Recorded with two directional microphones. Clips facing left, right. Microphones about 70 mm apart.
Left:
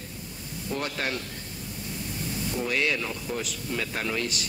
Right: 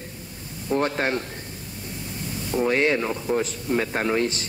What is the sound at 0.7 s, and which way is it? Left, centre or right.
Speech, right.